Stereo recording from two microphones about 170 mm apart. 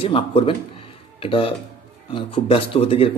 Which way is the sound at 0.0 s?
30° left (ahead or behind).